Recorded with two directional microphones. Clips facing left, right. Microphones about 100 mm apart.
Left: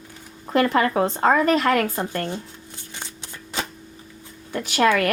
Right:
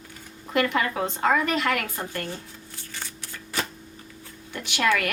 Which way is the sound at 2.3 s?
20° left (ahead or behind).